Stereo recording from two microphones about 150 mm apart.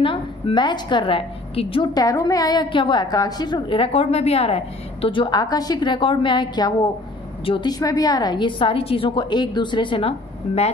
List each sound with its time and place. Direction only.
0.0 s a woman's voice: 35° left (ahead or behind)
2.0 s a woman's voice: 25° left (ahead or behind)
7.8 s a woman's voice: 25° left (ahead or behind); by 10.7 s 40° left (ahead or behind)